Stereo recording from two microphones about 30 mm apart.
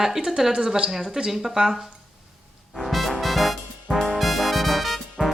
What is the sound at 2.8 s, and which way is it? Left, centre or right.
Music, centre.